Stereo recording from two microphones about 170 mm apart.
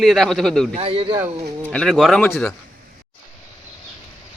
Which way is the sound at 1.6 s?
5° left (ahead or behind).